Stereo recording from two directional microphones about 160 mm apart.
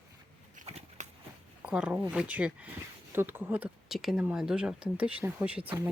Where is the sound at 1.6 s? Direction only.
5° right (ahead or behind).